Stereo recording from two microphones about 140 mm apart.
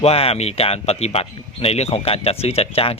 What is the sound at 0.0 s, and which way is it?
Speech, 45° left (ahead or behind).